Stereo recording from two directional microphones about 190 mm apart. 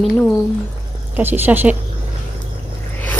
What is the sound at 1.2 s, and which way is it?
Speech, 10° right (ahead or behind).